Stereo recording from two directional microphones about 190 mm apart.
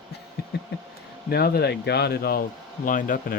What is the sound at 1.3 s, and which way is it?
Speech, 55° left (ahead or behind).